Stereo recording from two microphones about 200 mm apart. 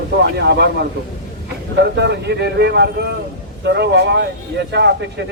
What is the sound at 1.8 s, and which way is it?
Speech, 60° right (ahead or behind).